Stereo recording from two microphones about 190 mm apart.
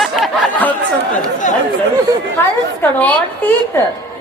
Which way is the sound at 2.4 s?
10° left (ahead or behind).